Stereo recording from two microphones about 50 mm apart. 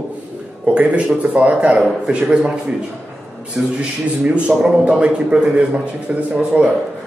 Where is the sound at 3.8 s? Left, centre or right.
Right.